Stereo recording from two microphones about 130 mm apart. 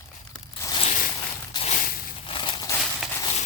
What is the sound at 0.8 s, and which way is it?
Zipper, 65° left (ahead or behind).